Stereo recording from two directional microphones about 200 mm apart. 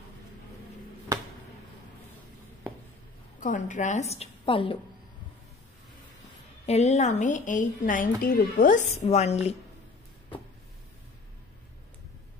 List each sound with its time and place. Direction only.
3.3 s a woman's voice: 40° left (ahead or behind)
6.6 s a woman's voice: 35° left (ahead or behind)